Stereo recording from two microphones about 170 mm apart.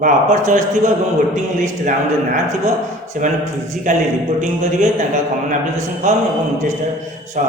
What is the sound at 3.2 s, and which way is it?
Speech, 45° right (ahead or behind).